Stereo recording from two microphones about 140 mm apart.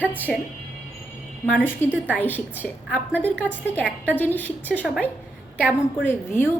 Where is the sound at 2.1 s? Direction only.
15° left (ahead or behind).